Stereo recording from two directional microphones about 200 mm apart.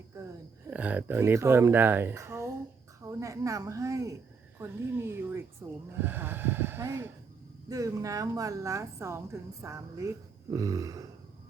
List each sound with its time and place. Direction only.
0.7 s a woman's voice: 10° right (ahead or behind)